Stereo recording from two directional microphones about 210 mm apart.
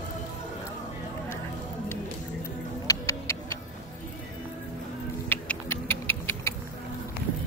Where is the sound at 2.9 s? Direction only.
15° left (ahead or behind).